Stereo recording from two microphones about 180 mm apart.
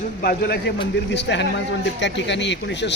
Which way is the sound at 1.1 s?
75° left (ahead or behind).